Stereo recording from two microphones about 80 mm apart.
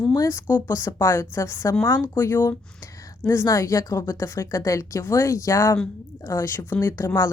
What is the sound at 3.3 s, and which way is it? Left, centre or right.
A woman's voice, left.